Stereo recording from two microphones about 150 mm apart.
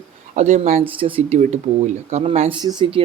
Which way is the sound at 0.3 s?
55° right (ahead or behind).